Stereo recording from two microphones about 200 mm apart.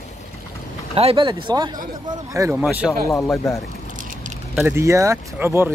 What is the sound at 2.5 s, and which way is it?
Speech, 5° right (ahead or behind).